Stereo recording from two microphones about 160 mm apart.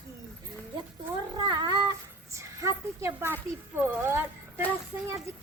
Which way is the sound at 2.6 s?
15° right (ahead or behind).